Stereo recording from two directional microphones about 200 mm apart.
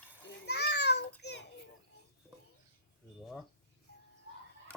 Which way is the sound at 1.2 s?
60° left (ahead or behind).